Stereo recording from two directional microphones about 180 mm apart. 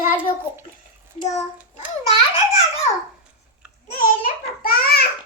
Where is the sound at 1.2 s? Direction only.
40° left (ahead or behind).